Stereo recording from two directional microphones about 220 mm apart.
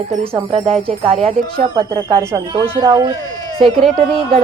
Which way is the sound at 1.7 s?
15° right (ahead or behind).